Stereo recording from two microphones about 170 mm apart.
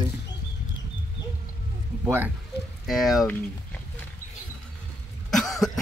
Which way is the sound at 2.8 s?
Centre (ahead or behind).